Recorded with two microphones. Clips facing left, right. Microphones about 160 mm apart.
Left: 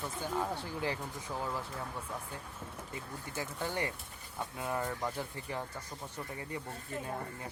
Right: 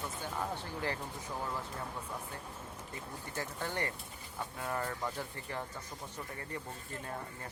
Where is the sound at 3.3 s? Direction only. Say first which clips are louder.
Left 2 dB; 10° left (ahead or behind).